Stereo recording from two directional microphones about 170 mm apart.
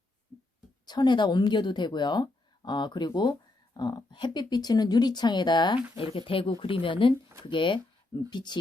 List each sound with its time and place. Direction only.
0.9 s speech: 25° left (ahead or behind)